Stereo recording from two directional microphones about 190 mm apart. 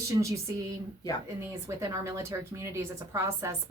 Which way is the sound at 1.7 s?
15° right (ahead or behind).